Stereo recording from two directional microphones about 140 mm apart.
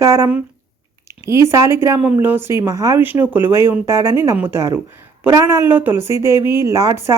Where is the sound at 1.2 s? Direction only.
20° right (ahead or behind).